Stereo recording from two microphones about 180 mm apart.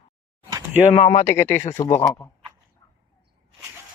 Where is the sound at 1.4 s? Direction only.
15° left (ahead or behind).